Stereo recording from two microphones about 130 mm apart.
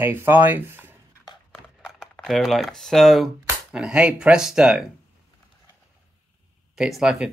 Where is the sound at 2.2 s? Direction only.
Centre (ahead or behind).